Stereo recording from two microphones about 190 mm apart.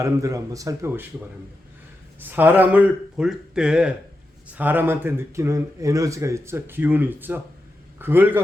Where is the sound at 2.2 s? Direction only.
10° right (ahead or behind).